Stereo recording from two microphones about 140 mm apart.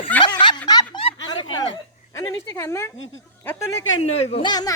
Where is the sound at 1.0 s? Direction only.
40° left (ahead or behind).